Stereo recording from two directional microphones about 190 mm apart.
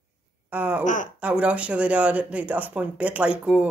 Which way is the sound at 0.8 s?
40° left (ahead or behind).